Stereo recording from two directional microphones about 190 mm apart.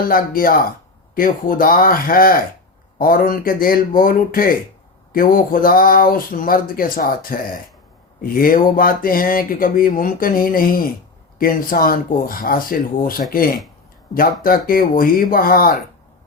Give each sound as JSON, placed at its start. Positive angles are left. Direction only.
{"t": 0.1, "sound": "speech", "side_deg": 50}